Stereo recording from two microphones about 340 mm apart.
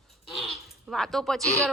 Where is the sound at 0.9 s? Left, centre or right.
Centre.